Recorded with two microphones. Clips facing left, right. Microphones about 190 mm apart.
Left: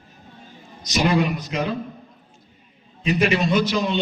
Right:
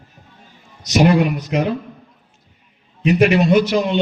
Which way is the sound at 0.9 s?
60° right (ahead or behind).